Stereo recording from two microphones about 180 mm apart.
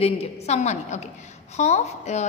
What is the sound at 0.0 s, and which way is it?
A woman's voice, 35° left (ahead or behind).